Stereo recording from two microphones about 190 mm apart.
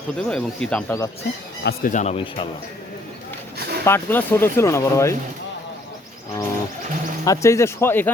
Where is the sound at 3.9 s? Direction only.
10° left (ahead or behind).